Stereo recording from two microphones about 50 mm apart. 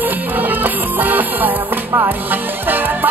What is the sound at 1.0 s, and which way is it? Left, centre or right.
Music, right.